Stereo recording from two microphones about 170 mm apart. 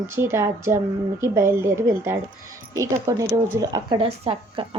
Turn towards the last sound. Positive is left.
turn(degrees=-35)  # may be behind; listen again after turning